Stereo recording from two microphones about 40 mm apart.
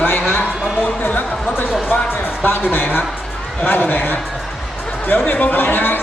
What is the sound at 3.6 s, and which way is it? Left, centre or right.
Chant, left.